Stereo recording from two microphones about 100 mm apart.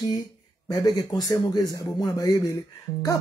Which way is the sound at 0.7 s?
40° left (ahead or behind).